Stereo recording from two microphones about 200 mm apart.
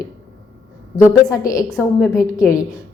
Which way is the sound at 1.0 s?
15° left (ahead or behind).